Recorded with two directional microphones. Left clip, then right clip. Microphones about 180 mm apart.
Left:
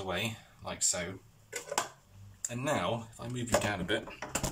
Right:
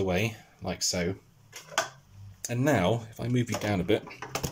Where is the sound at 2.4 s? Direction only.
35° right (ahead or behind).